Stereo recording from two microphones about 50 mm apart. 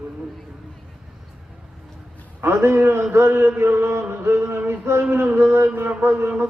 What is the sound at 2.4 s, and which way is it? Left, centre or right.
A man's voice, right.